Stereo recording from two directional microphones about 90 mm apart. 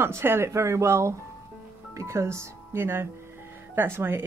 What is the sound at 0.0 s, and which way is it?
A woman's voice, 25° right (ahead or behind).